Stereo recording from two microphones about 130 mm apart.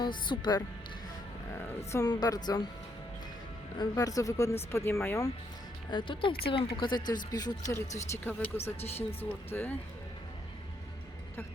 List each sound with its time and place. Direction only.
0.0 s speech: 35° left (ahead or behind)
1.9 s speech: 25° left (ahead or behind)
3.8 s speech: 30° left (ahead or behind)
5.9 s speech: 40° left (ahead or behind); by 8.4 s 20° left (ahead or behind)
9.5 s speech: 15° left (ahead or behind)